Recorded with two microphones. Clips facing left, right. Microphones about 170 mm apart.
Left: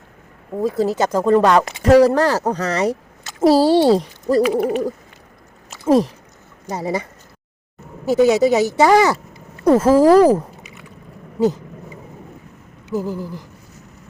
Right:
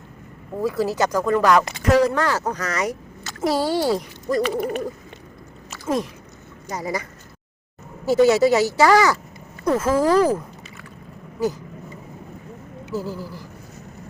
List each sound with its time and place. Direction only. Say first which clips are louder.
0.6 s speech: left 3 dB; 20° left (ahead or behind)
6.7 s speech: left 4 dB; 30° left (ahead or behind)
8.0 s speech: left 2 dB; 15° left (ahead or behind)
9.6 s speech: left 7 dB; 35° left (ahead or behind)
11.3 s dog: left 6 dB; 25° left (ahead or behind)
12.9 s speech: left 5 dB; 15° left (ahead or behind)